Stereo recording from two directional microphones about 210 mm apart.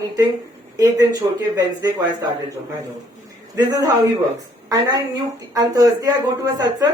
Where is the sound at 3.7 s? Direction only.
15° right (ahead or behind).